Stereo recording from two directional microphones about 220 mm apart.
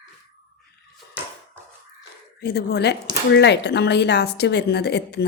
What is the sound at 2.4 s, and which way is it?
A woman's voice, 50° left (ahead or behind).